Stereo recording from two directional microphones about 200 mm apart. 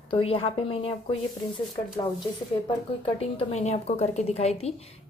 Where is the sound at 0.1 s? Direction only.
25° left (ahead or behind).